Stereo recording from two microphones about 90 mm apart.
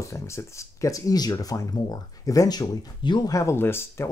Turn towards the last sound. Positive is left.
turn(degrees=25)  # may be behind; listen again after turning